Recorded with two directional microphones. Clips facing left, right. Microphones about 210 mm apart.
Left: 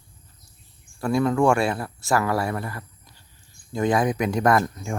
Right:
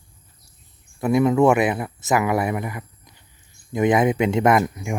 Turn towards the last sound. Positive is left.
turn(degrees=-10)  # may be behind; listen again after turning